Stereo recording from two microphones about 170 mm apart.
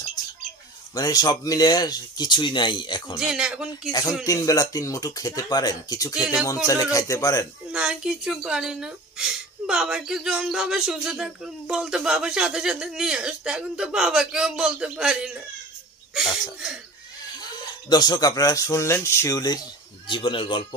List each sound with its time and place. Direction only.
0.9 s speech: 20° left (ahead or behind)
3.2 s speech: 5° right (ahead or behind)
4.3 s speech: 20° left (ahead or behind)
7.7 s speech: 5° right (ahead or behind)
17.4 s speech: 25° left (ahead or behind)